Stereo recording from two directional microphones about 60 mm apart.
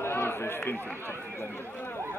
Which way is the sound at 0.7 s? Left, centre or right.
Left.